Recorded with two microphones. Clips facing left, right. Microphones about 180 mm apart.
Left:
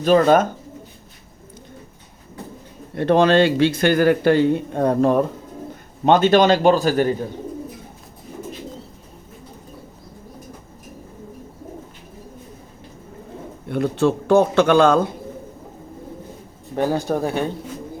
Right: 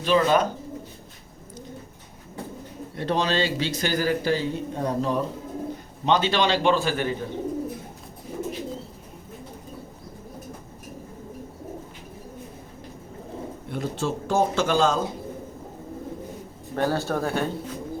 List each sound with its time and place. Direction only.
0.0 s a man's voice: 45° left (ahead or behind)
2.9 s a man's voice: 55° left (ahead or behind)
13.7 s speech: 60° left (ahead or behind)
16.7 s speech: 15° left (ahead or behind)